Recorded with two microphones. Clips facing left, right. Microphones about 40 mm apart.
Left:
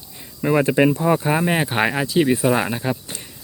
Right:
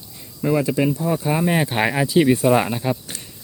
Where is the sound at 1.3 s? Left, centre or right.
Centre.